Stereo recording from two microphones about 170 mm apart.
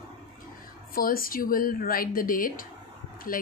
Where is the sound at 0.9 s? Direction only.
55° left (ahead or behind).